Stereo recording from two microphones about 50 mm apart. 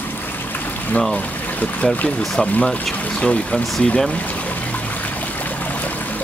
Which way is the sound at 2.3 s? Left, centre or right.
Centre.